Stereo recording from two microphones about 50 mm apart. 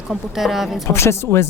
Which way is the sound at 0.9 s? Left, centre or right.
Left.